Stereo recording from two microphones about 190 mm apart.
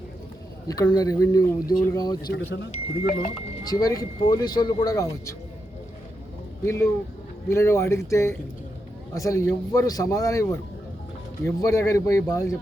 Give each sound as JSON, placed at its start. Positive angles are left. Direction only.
{"t": 0.7, "sound": "speech", "side_deg": 20}
{"t": 3.0, "sound": "speech", "side_deg": 50}
{"t": 3.6, "sound": "speech", "side_deg": 20}
{"t": 6.7, "sound": "a man's voice", "side_deg": 15}